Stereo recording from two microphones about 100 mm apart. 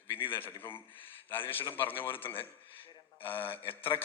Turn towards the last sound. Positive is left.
turn(degrees=20)  # may be behind; listen again after turning